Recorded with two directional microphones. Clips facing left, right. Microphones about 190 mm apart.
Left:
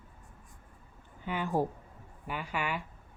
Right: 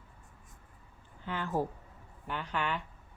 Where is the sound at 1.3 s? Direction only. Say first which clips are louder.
Left 2 dB; 15° left (ahead or behind).